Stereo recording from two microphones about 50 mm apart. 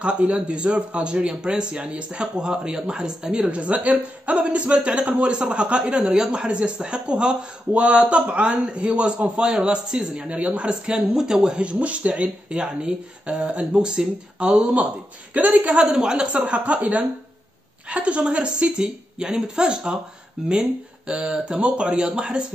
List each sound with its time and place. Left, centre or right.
0.0 s a woman's voice: right
3.4 s a woman's voice: right
11.6 s a woman's voice: right
12.4 s a woman's voice: centre
15.9 s a woman's voice: centre